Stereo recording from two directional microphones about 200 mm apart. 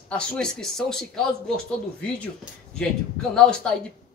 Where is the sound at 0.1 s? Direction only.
5° left (ahead or behind).